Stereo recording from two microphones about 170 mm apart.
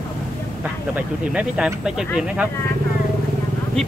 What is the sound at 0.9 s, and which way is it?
Speech, 5° right (ahead or behind).